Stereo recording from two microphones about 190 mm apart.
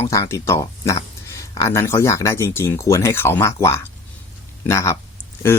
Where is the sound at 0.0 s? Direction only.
15° left (ahead or behind).